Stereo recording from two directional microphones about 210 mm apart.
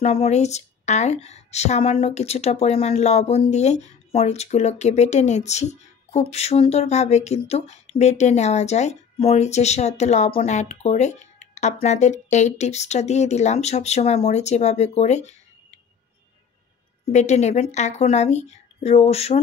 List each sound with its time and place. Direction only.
0.0 s a woman's voice: 30° left (ahead or behind)
17.0 s a woman's voice: 35° left (ahead or behind)